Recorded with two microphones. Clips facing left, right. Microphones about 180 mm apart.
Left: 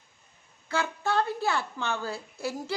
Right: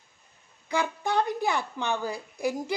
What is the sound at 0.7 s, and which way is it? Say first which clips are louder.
A woman's voice: right 1 dB; 15° right (ahead or behind).